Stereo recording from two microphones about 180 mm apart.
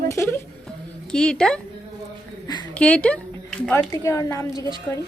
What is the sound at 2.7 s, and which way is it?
A woman's voice, 5° left (ahead or behind).